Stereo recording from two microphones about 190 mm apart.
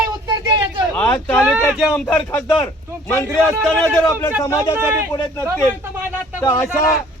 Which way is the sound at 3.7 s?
5° left (ahead or behind).